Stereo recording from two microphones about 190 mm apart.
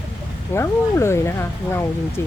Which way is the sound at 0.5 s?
15° left (ahead or behind).